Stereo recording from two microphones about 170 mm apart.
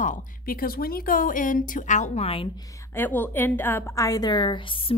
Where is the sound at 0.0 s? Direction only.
55° left (ahead or behind); by 2.5 s 35° left (ahead or behind).